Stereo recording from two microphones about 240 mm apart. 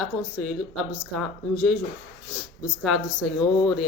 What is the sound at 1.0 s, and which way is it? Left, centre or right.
Speech, centre.